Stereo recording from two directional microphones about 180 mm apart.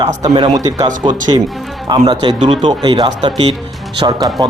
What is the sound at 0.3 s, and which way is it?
Speech, 20° right (ahead or behind).